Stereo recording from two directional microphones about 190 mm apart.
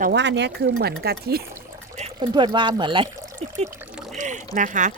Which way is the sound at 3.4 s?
40° right (ahead or behind).